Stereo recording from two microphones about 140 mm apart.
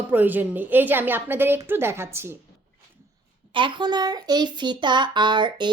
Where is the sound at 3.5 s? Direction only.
35° right (ahead or behind).